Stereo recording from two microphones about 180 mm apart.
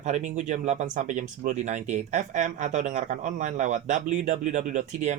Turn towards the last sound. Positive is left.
turn(degrees=-40)  # may be behind; listen again after turning